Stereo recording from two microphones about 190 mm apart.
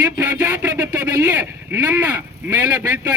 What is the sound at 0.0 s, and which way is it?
Speech, 20° right (ahead or behind).